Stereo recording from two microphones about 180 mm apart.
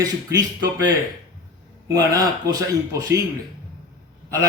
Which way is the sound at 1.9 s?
20° right (ahead or behind).